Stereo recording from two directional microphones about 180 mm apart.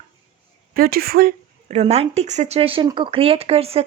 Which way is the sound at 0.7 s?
55° right (ahead or behind).